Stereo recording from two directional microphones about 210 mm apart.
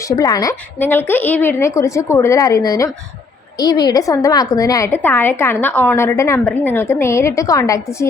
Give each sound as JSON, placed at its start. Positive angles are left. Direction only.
{"t": 0.0, "sound": "a woman's voice", "side_deg": 15}